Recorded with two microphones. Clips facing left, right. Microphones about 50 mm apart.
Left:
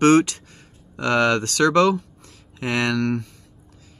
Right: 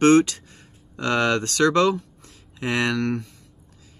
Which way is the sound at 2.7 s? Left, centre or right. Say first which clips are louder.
Left 1 dB; right.